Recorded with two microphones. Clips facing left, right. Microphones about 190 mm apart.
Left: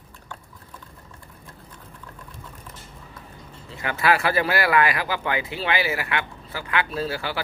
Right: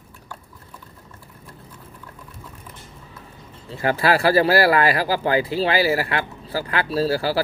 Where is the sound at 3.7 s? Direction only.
35° right (ahead or behind).